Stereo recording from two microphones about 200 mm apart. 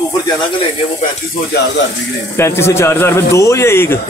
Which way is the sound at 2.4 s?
10° left (ahead or behind).